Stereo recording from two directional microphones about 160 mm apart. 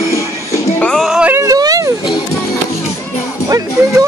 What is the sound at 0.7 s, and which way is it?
Music, 5° left (ahead or behind).